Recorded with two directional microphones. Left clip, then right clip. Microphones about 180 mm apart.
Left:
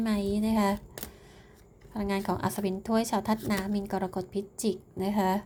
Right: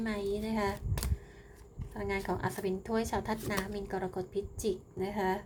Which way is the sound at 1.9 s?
35° left (ahead or behind).